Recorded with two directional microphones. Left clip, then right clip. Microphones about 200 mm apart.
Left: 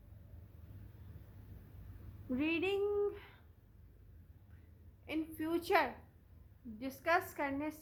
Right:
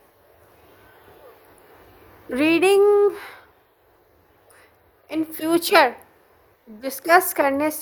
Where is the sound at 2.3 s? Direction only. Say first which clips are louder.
Right 19 dB; 50° right (ahead or behind).